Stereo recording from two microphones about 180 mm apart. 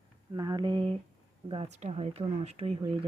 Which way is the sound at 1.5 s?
35° right (ahead or behind).